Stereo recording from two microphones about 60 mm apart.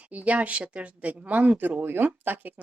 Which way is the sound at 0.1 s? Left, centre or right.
Right.